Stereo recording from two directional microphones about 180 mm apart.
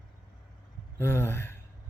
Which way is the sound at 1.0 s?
15° left (ahead or behind).